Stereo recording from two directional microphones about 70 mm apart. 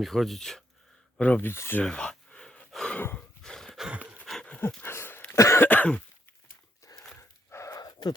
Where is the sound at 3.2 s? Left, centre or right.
Centre.